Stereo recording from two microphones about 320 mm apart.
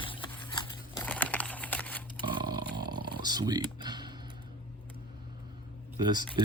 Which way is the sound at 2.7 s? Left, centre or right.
Centre.